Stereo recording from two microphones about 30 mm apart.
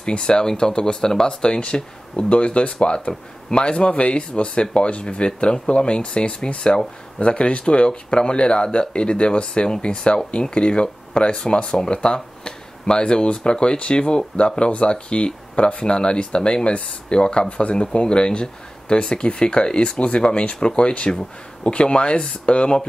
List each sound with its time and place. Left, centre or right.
0.0 s speech: left
2.3 s speech: left
3.1 s speech: left